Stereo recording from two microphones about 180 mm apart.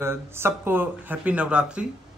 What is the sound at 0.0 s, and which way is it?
Speech, 15° right (ahead or behind).